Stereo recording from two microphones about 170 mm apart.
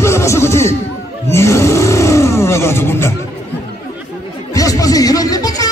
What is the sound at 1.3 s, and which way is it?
Roar, 15° left (ahead or behind).